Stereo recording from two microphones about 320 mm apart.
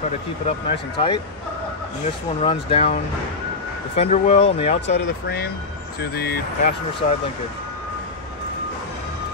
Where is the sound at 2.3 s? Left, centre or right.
Centre.